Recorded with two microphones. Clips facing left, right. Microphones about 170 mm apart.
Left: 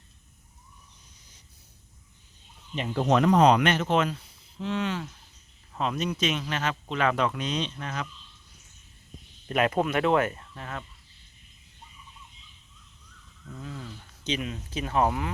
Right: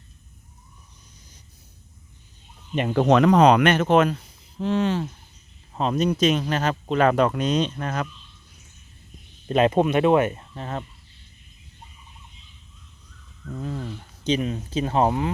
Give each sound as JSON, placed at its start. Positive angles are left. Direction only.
{"t": 2.7, "sound": "speech", "side_deg": -65}
{"t": 9.5, "sound": "speech", "side_deg": -25}
{"t": 13.6, "sound": "a sound", "side_deg": -45}
{"t": 14.3, "sound": "speech", "side_deg": -35}